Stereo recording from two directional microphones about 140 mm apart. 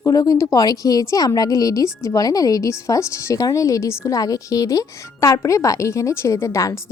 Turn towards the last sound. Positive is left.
turn(degrees=20)  # may be behind; listen again after turning